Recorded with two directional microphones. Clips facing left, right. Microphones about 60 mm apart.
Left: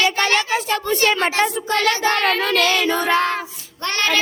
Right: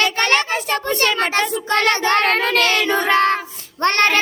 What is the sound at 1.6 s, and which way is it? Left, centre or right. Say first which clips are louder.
Child singing: right 1 dB; right.